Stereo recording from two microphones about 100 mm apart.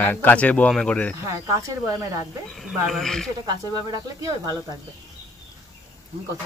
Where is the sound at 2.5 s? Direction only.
Centre (ahead or behind).